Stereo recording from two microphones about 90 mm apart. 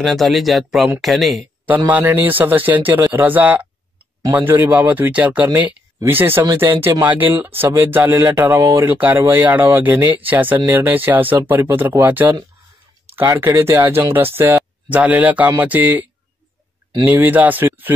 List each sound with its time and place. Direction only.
0.0 s speech: centre (ahead or behind)
1.9 s speech: 20° right (ahead or behind)
8.8 s speech: 20° right (ahead or behind)